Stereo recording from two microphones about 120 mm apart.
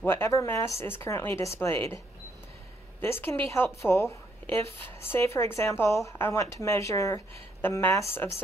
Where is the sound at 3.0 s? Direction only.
20° left (ahead or behind).